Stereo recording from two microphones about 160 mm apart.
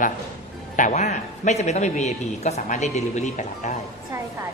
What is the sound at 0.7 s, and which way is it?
A man's voice, 50° left (ahead or behind).